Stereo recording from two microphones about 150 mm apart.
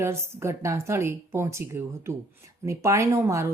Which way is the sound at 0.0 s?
20° right (ahead or behind).